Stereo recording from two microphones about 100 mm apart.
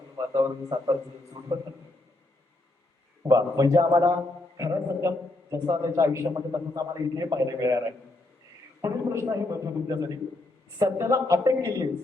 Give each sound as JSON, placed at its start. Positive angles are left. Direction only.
{"t": 0.3, "sound": "a man's voice", "side_deg": -35}
{"t": 3.2, "sound": "a man's voice", "side_deg": -35}